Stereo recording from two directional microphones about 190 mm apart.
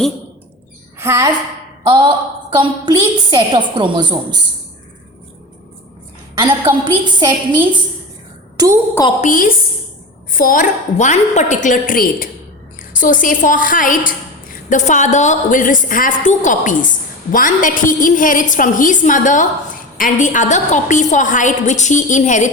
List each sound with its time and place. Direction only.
0.9 s a woman's voice: 15° right (ahead or behind)
1.9 s a woman's voice: 25° right (ahead or behind)
6.4 s a woman's voice: 25° right (ahead or behind)
8.5 s a woman's voice: 20° right (ahead or behind)
9.2 s a woman's voice: 45° left (ahead or behind)